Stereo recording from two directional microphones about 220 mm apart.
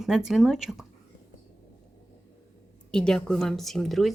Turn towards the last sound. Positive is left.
turn(degrees=0)  # may be behind; listen again after turning